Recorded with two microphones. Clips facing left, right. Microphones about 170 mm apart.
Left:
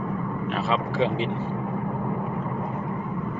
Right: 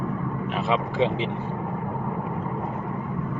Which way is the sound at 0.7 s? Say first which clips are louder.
Right 1 dB; 20° right (ahead or behind).